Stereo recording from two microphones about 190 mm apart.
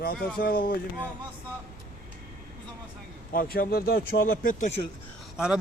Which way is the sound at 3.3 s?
50° left (ahead or behind).